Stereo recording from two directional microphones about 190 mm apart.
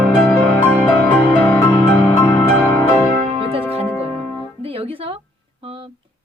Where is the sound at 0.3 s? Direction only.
10° left (ahead or behind).